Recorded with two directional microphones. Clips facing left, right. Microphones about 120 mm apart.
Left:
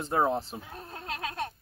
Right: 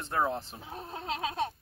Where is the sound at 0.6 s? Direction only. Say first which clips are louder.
Right 2 dB; 25° right (ahead or behind).